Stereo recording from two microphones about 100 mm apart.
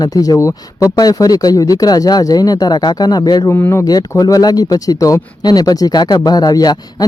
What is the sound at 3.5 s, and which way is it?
Speech, 25° left (ahead or behind).